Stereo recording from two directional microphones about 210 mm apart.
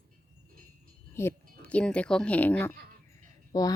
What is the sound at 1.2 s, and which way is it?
Speech, 10° left (ahead or behind).